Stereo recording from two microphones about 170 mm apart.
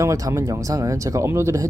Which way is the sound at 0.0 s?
15° right (ahead or behind).